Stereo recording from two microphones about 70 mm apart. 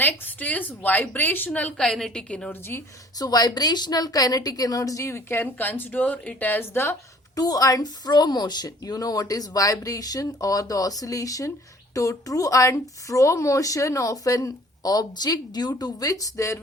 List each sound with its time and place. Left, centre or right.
0.0 s a woman's voice: left
1.8 s a woman's voice: centre
2.5 s a woman's voice: left
3.2 s speech: left
5.3 s a woman's voice: left
7.3 s speech: left
8.6 s speech: left